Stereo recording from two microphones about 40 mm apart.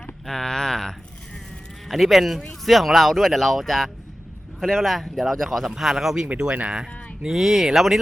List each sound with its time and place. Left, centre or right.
0.3 s speech: centre
1.9 s speech: centre
6.3 s speech: right; by 7.9 s centre